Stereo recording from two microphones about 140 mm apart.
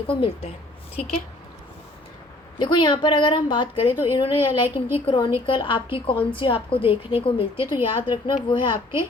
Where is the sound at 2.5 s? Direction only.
35° left (ahead or behind).